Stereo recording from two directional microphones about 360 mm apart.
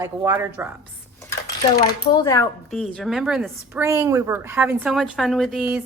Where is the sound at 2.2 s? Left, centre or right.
Centre.